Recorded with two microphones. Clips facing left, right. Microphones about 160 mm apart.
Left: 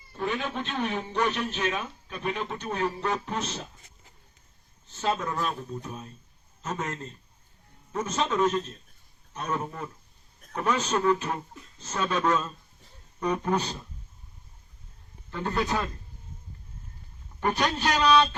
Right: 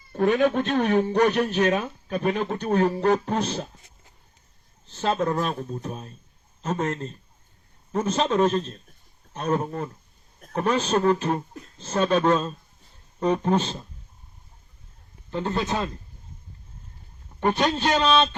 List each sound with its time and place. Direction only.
0.1 s a man's voice: 50° right (ahead or behind); by 3.7 s 35° right (ahead or behind)
4.9 s a man's voice: 30° right (ahead or behind)
15.3 s a man's voice: 20° right (ahead or behind)
17.4 s a man's voice: 25° right (ahead or behind)